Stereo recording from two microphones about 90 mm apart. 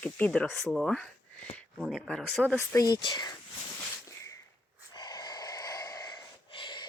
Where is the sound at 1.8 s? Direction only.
10° right (ahead or behind).